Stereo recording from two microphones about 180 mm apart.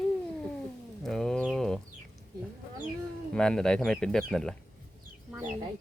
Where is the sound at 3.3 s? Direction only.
5° left (ahead or behind).